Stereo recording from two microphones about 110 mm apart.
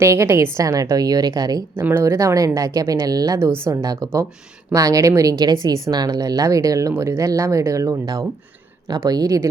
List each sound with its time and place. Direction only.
0.0 s a woman's voice: 25° right (ahead or behind)
1.7 s a woman's voice: 20° right (ahead or behind)